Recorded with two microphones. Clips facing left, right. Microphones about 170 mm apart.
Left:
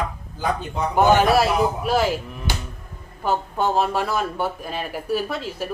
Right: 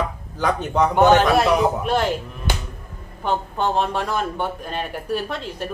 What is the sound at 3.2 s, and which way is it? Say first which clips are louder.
A woman's voice: even; 5° left (ahead or behind).